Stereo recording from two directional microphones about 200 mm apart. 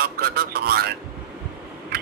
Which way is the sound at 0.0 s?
50° right (ahead or behind).